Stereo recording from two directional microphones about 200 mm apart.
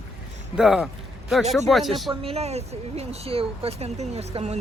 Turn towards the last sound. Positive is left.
turn(degrees=-35)  # may be behind; listen again after turning